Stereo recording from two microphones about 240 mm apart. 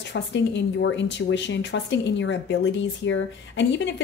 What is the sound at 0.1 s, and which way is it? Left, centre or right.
A woman's voice, left.